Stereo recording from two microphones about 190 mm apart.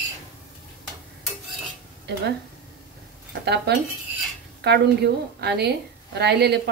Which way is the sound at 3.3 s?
60° right (ahead or behind).